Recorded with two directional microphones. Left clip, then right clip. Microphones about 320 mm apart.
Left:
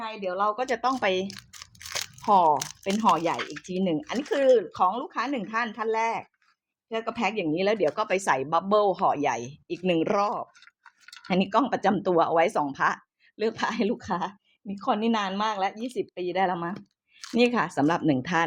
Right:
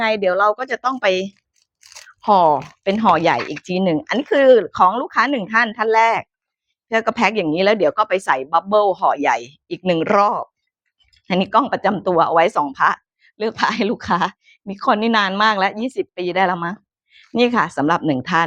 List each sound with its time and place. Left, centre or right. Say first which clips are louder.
0.0 s speech: right 12 dB; right
0.5 s speech: right 5 dB; centre
9.2 s speech: right 9 dB; centre